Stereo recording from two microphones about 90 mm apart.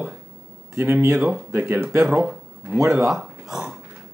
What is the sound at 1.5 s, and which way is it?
Speech, 25° right (ahead or behind).